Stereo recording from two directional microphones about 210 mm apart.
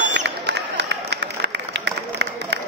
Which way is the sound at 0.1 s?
55° right (ahead or behind).